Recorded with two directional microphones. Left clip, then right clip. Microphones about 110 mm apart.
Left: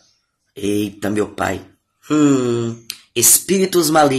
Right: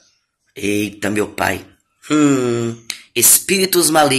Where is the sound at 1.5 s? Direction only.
50° left (ahead or behind).